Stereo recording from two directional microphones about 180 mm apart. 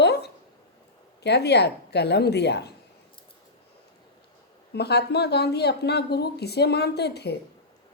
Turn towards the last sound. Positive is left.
turn(degrees=65)  # may be behind; listen again after turning